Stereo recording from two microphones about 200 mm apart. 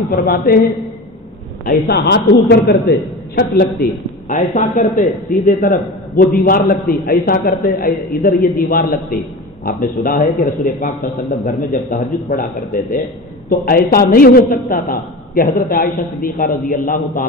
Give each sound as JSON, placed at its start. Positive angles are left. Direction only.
{"t": 0.1, "sound": "a man's voice", "side_deg": 45}
{"t": 1.7, "sound": "a man's voice", "side_deg": 55}
{"t": 13.5, "sound": "a man's voice", "side_deg": 45}